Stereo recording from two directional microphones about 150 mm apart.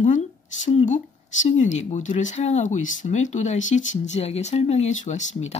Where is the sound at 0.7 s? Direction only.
55° left (ahead or behind).